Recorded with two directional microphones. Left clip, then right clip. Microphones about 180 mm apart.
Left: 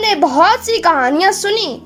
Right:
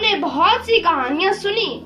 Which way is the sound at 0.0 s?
55° left (ahead or behind).